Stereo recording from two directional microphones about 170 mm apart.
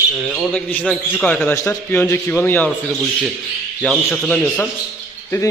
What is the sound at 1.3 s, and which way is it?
A man's voice, 10° left (ahead or behind).